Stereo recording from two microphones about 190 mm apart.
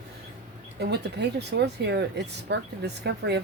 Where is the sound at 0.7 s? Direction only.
60° right (ahead or behind).